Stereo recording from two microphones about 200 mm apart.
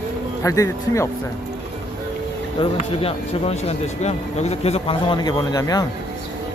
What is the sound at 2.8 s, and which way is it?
Speech, 30° left (ahead or behind).